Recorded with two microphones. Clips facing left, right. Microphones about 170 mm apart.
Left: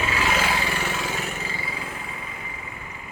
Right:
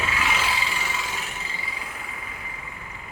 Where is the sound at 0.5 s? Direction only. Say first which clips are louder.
Left 4 dB; 60° left (ahead or behind).